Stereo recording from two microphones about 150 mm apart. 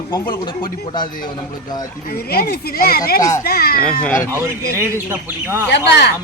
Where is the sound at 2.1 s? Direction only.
90° left.